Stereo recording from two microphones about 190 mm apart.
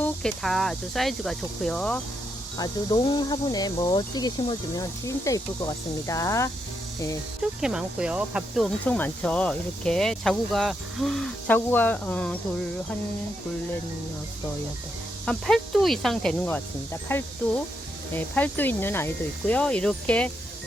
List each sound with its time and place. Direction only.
0.0 s speech: 5° left (ahead or behind)
2.6 s speech: 20° left (ahead or behind)
7.6 s speech: 5° right (ahead or behind)
15.3 s speech: 5° left (ahead or behind)